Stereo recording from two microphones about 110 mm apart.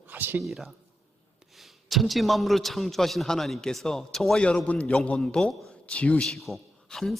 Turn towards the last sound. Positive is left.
turn(degrees=5)  # may be behind; listen again after turning